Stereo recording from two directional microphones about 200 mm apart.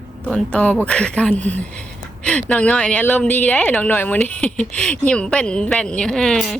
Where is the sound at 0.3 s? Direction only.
5° left (ahead or behind).